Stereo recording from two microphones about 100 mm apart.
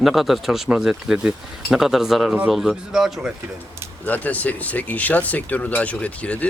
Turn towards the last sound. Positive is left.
turn(degrees=15)  # may be behind; listen again after turning